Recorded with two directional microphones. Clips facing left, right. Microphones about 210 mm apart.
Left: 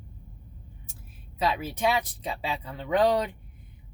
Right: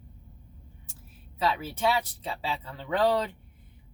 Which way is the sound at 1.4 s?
15° left (ahead or behind).